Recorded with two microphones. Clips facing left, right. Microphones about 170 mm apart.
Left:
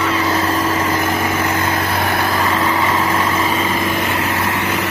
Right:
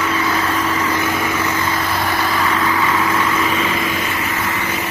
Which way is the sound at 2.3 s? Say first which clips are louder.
Left 1 dB; 40° left (ahead or behind).